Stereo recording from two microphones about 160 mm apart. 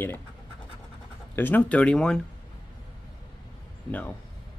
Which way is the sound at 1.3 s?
10° left (ahead or behind).